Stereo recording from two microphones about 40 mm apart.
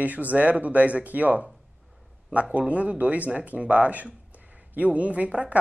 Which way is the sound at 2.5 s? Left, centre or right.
Right.